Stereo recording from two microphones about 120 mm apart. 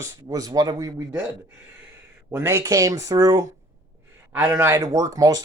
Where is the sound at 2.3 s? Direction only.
20° right (ahead or behind).